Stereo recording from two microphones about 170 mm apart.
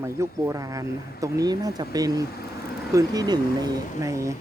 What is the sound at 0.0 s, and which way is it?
Speech, 15° right (ahead or behind).